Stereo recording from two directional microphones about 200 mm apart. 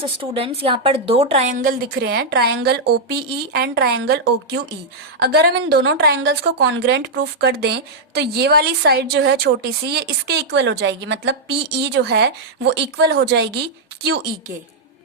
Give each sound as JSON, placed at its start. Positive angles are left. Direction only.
{"t": 0.0, "sound": "a woman's voice", "side_deg": -25}
{"t": 1.6, "sound": "a woman's voice", "side_deg": -50}